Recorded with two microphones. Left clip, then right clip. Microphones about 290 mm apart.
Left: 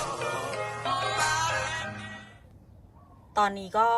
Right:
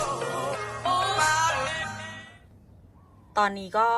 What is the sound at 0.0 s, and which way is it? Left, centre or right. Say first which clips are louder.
Music: right 3 dB; centre.